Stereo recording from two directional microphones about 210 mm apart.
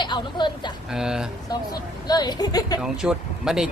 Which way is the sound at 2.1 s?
20° left (ahead or behind).